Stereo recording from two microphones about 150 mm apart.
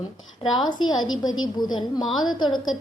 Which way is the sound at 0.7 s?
30° left (ahead or behind).